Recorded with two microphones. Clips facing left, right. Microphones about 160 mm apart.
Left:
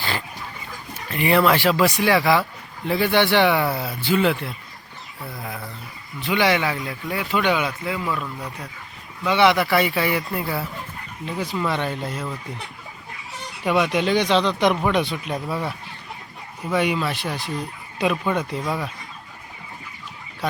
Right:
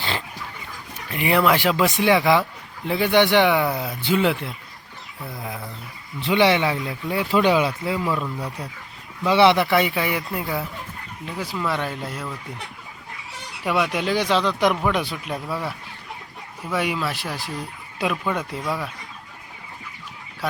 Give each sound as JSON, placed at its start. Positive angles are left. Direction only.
{"t": 1.1, "sound": "speech", "side_deg": -15}
{"t": 6.1, "sound": "speech", "side_deg": -30}
{"t": 11.3, "sound": "speech", "side_deg": 0}
{"t": 13.7, "sound": "speech", "side_deg": -5}
{"t": 16.7, "sound": "speech", "side_deg": -5}